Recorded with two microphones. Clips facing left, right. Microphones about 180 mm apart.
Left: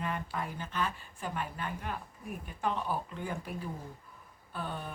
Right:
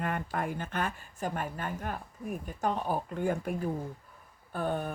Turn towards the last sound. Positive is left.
turn(degrees=-50)  # may be behind; listen again after turning